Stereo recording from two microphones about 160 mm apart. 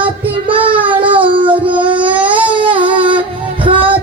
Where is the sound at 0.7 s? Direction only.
30° right (ahead or behind).